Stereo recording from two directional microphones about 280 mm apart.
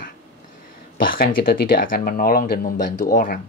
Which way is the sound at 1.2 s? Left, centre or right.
Left.